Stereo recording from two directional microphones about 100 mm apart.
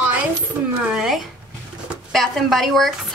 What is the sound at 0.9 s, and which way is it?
A woman's voice, 5° right (ahead or behind).